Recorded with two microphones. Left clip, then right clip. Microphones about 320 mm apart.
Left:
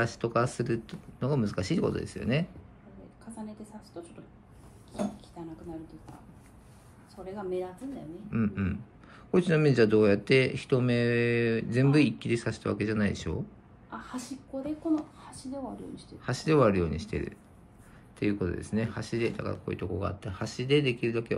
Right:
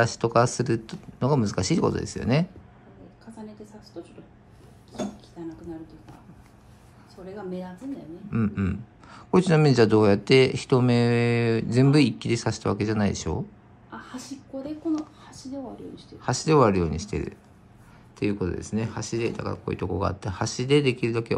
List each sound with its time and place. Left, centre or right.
0.0 s speech: centre
8.3 s speech: centre
13.8 s a sound: centre
16.2 s speech: centre